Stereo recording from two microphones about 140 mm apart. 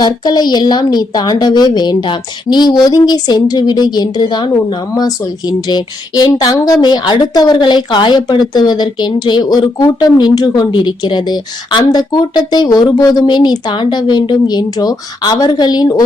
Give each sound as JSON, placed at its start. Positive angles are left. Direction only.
{"t": 0.0, "sound": "speech", "side_deg": 30}